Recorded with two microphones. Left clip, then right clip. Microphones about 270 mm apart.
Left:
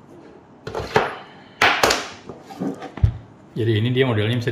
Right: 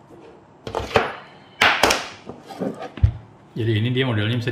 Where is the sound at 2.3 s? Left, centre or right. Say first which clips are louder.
Even; right.